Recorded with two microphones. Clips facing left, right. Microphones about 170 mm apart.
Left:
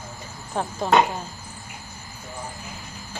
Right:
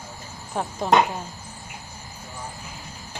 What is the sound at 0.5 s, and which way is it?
Speech, 15° right (ahead or behind).